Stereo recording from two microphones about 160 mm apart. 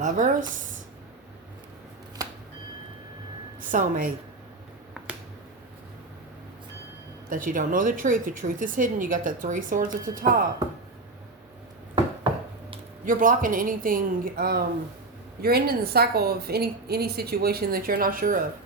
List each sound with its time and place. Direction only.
0.0 s speech: 50° right (ahead or behind)
2.2 s a sound: 20° right (ahead or behind)
3.6 s a woman's voice: 55° right (ahead or behind)
7.3 s speech: 55° right (ahead or behind)
13.1 s a woman's voice: 60° right (ahead or behind)